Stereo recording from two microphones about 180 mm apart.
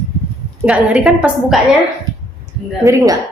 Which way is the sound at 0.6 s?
5° right (ahead or behind).